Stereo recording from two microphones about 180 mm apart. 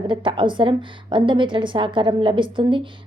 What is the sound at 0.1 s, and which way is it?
A woman's voice, 25° right (ahead or behind).